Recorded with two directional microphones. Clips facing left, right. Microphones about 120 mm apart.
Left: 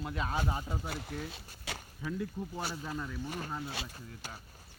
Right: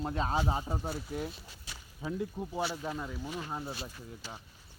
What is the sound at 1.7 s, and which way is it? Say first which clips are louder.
Speech: left 9 dB; 65° left (ahead or behind).